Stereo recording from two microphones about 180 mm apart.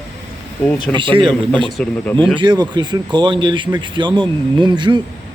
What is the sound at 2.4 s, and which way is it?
Speech, 25° right (ahead or behind).